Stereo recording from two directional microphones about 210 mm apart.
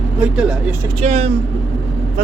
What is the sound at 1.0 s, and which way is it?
Speech, 30° right (ahead or behind).